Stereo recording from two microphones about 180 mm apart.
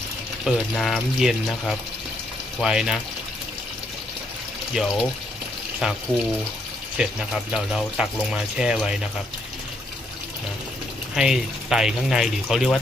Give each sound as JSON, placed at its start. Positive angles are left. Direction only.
{"t": 0.4, "sound": "speech", "side_deg": 0}
{"t": 4.7, "sound": "speech", "side_deg": 0}
{"t": 7.0, "sound": "speech", "side_deg": -5}
{"t": 11.1, "sound": "speech", "side_deg": 0}